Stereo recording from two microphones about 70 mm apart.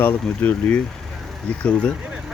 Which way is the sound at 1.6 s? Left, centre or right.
Centre.